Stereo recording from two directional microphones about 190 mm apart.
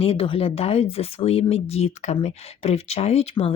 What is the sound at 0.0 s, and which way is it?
Speech, 30° left (ahead or behind).